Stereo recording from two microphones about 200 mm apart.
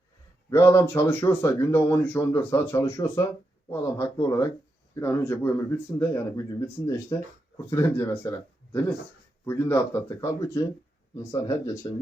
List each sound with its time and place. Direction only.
0.5 s speech: 15° left (ahead or behind)
9.5 s speech: 10° left (ahead or behind)